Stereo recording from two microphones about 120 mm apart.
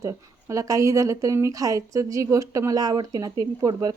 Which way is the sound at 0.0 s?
25° right (ahead or behind).